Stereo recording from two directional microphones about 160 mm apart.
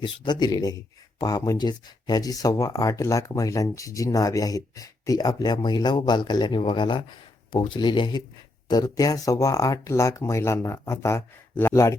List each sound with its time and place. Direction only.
0.0 s speech: 25° left (ahead or behind)